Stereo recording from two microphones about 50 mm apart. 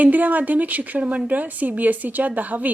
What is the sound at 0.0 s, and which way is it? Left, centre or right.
A woman's voice, right.